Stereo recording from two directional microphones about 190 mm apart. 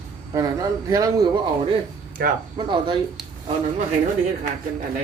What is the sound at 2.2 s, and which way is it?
Speech, 50° right (ahead or behind).